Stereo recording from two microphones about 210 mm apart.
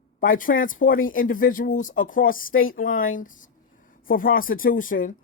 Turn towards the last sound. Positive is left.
turn(degrees=40)  # may be behind; listen again after turning